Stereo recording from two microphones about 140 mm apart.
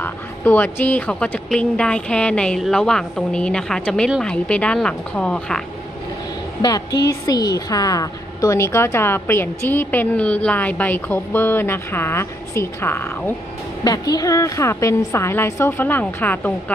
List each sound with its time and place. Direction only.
0.0 s a woman's voice: 15° left (ahead or behind)
6.6 s a woman's voice: 30° left (ahead or behind)
13.8 s a woman's voice: 25° left (ahead or behind); by 16.7 s 10° left (ahead or behind)